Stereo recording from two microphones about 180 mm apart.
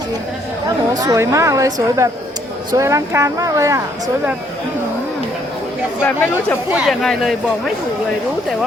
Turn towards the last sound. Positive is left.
turn(degrees=0)  # may be behind; listen again after turning